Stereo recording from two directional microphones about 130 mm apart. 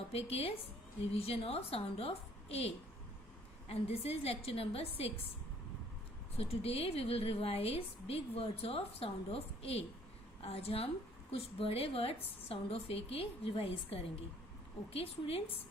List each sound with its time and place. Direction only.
0.1 s a woman's voice: 50° left (ahead or behind)
6.3 s a woman's voice: 50° left (ahead or behind)